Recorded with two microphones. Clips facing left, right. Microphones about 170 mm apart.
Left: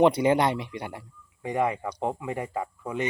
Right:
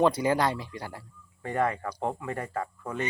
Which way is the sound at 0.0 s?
20° left (ahead or behind).